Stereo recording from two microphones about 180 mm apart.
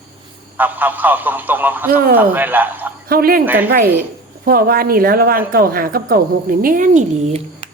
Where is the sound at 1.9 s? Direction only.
55° right (ahead or behind).